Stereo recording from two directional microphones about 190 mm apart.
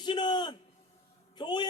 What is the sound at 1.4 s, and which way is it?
Speech, 25° left (ahead or behind).